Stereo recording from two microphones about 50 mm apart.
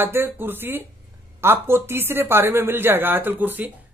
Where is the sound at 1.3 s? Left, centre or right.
Right.